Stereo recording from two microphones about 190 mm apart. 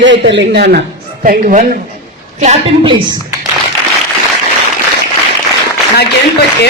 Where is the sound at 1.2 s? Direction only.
45° right (ahead or behind).